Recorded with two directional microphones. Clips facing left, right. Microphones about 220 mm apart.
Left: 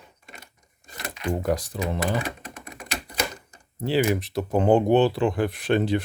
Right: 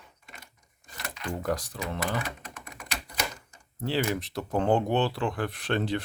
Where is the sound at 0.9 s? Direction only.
15° left (ahead or behind).